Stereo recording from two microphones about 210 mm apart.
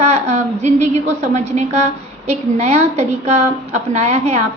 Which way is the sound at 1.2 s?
35° right (ahead or behind).